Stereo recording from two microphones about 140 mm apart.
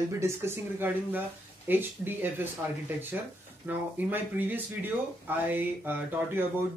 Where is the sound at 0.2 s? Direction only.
15° right (ahead or behind).